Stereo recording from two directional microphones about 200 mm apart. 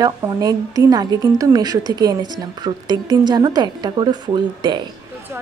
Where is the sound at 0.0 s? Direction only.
20° right (ahead or behind).